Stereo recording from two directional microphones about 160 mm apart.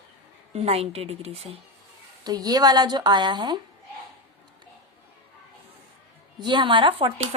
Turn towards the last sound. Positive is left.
turn(degrees=-30)  # may be behind; listen again after turning